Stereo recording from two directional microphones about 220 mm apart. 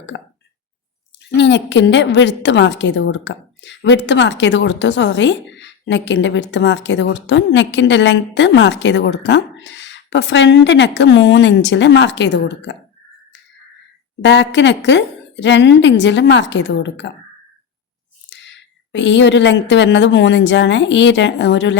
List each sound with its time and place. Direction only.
0.1 s speech: 55° left (ahead or behind)
1.3 s a woman's voice: 50° left (ahead or behind)
14.2 s a woman's voice: 55° left (ahead or behind)
18.3 s speech: 55° left (ahead or behind)